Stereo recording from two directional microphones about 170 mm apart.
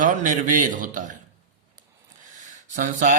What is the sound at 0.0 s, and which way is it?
Speech, 50° right (ahead or behind).